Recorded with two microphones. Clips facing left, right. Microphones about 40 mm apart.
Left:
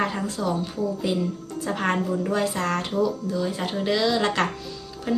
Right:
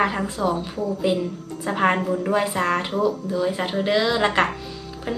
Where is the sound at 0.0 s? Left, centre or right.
Centre.